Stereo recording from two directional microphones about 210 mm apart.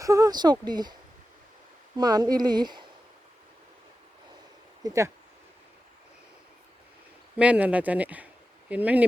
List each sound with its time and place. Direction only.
0.0 s speech: 15° right (ahead or behind)
2.0 s speech: 20° right (ahead or behind)
4.8 s speech: 15° right (ahead or behind)
7.3 s speech: 5° right (ahead or behind)